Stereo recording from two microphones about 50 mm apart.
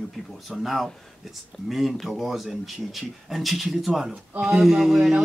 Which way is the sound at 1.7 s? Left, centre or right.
Centre.